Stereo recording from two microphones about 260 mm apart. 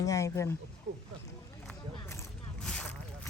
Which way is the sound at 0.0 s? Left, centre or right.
Centre.